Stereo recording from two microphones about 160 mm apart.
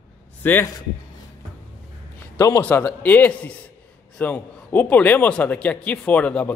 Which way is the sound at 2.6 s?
10° left (ahead or behind).